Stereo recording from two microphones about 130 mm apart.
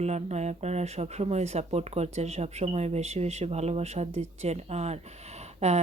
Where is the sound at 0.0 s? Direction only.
60° right (ahead or behind).